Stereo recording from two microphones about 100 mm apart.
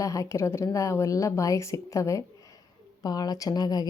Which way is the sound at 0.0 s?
35° left (ahead or behind).